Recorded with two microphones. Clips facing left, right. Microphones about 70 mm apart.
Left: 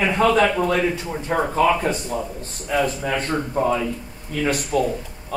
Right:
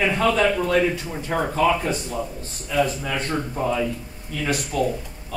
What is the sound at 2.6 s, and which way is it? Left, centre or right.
Speech, left.